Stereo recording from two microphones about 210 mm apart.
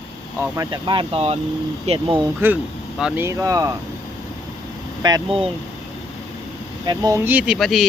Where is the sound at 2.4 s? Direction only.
10° right (ahead or behind).